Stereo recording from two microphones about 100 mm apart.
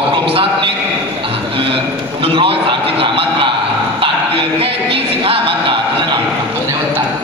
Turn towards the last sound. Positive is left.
turn(degrees=-65)  # may be behind; listen again after turning